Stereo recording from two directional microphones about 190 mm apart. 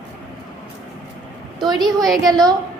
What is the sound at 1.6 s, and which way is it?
Speech, 20° right (ahead or behind).